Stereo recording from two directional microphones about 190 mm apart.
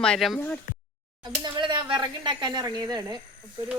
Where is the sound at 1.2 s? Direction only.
25° right (ahead or behind).